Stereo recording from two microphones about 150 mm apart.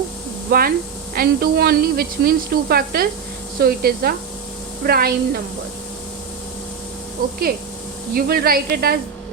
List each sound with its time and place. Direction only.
0.5 s speech: 70° right (ahead or behind)
1.1 s a woman's voice: 85° right
8.1 s a woman's voice: 90° right